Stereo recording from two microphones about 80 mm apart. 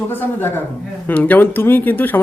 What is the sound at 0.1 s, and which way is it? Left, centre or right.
Speech, left.